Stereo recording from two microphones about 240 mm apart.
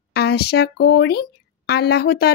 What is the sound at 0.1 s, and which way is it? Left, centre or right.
Speech, left.